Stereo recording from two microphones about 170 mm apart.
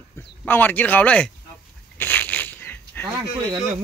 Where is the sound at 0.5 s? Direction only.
10° left (ahead or behind).